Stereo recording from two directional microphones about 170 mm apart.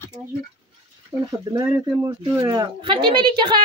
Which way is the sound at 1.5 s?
15° right (ahead or behind).